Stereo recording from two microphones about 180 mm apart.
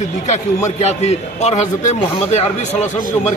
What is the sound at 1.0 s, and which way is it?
Speech, 40° left (ahead or behind).